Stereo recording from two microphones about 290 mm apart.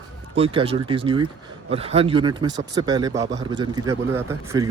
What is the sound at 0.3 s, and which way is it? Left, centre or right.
Speech, centre.